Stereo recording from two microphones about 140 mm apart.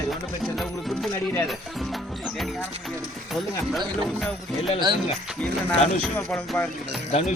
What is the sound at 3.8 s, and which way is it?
Speech, centre (ahead or behind).